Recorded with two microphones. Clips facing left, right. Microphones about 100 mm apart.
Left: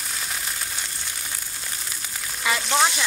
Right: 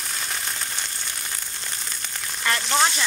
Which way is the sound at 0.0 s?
Centre (ahead or behind).